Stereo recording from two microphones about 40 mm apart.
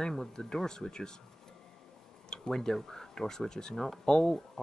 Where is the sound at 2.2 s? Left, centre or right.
Centre.